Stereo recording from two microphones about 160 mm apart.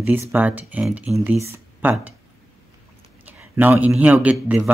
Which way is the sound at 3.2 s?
10° right (ahead or behind).